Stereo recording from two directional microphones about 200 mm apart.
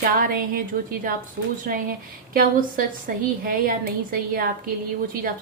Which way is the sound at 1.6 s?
45° right (ahead or behind).